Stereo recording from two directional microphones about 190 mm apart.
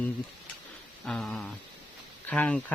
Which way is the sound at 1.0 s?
5° left (ahead or behind).